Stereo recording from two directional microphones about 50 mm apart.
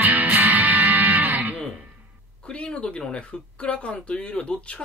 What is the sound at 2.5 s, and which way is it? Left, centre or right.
Speech, left.